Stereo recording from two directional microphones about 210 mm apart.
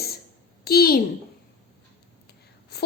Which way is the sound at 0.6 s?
45° left (ahead or behind).